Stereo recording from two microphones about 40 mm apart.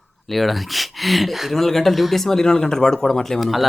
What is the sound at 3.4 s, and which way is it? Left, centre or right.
Speech, centre.